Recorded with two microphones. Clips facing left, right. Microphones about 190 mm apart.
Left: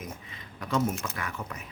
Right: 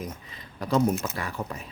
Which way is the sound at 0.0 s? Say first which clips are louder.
Right 4 dB; 35° right (ahead or behind).